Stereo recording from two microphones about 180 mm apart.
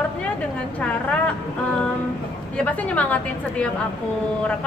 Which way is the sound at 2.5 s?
10° left (ahead or behind).